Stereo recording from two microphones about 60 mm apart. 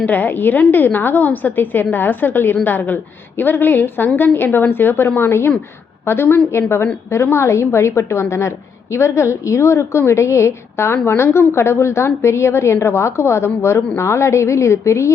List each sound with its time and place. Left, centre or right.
0.0 s a woman's voice: left
10.9 s a woman's voice: left